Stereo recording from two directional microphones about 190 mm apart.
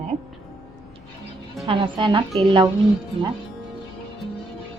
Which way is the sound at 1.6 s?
25° right (ahead or behind).